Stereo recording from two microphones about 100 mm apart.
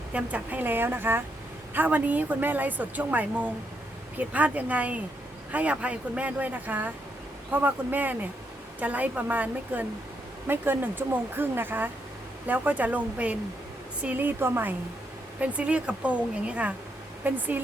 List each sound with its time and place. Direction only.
0.1 s a woman's voice: 15° right (ahead or behind)